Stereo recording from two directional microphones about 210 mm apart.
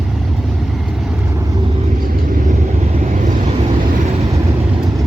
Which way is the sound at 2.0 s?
40° right (ahead or behind).